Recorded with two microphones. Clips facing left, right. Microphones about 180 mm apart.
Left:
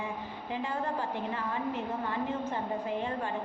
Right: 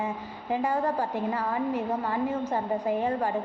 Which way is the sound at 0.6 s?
40° right (ahead or behind).